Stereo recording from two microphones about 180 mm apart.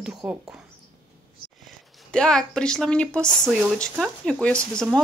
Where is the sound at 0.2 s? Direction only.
5° right (ahead or behind).